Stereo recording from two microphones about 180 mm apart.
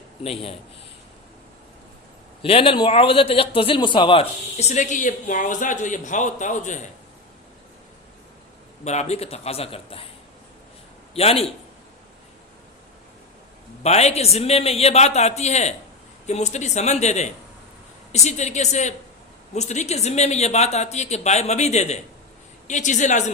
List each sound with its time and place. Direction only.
0.2 s a man's voice: 35° left (ahead or behind)
2.4 s a man's voice: 30° left (ahead or behind)
8.8 s a man's voice: 40° left (ahead or behind)
11.1 s a man's voice: 35° left (ahead or behind)
13.8 s a man's voice: 35° left (ahead or behind)